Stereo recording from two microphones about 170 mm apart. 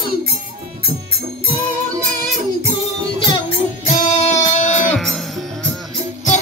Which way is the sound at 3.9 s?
45° left (ahead or behind).